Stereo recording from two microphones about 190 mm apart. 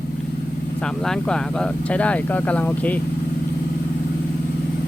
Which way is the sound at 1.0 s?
5° left (ahead or behind).